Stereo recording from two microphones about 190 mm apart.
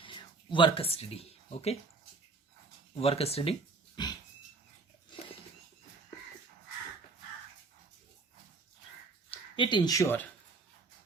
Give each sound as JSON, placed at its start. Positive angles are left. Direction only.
{"t": 0.0, "sound": "speech", "side_deg": 25}
{"t": 2.9, "sound": "speech", "side_deg": 30}
{"t": 4.0, "sound": "a sound", "side_deg": 25}
{"t": 9.3, "sound": "speech", "side_deg": 25}